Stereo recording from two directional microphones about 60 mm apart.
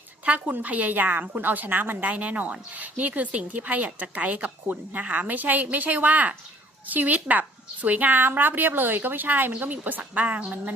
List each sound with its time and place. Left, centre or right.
0.3 s a woman's voice: right